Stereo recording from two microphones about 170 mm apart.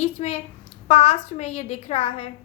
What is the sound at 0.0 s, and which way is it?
A woman's voice, 40° left (ahead or behind).